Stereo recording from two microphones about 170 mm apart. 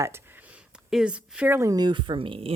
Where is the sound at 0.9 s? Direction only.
5° right (ahead or behind); by 2.5 s 30° right (ahead or behind).